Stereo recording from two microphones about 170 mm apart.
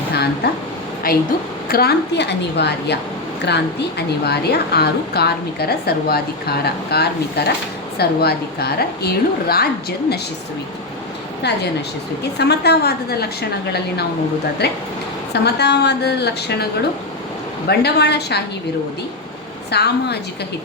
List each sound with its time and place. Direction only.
0.4 s a woman's voice: 70° left (ahead or behind)
1.0 s a woman's voice: 60° left (ahead or behind)
11.4 s a woman's voice: 80° left
17.7 s a woman's voice: 75° left (ahead or behind)
19.7 s a woman's voice: 75° left (ahead or behind)